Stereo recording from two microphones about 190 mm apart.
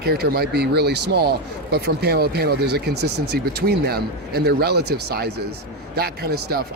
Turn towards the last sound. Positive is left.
turn(degrees=-55)  # may be behind; listen again after turning